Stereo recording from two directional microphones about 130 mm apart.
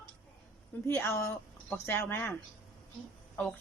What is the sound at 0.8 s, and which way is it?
A woman's voice, 20° left (ahead or behind).